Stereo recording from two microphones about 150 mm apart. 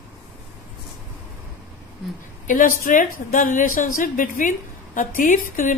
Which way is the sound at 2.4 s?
60° left (ahead or behind).